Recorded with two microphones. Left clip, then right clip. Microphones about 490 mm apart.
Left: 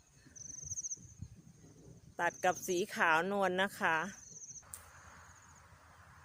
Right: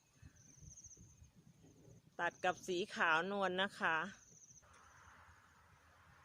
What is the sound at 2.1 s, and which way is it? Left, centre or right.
Speech, right.